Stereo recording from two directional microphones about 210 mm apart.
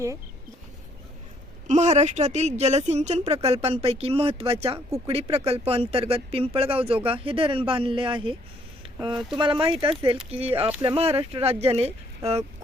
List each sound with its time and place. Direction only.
1.6 s a woman's voice: 35° right (ahead or behind)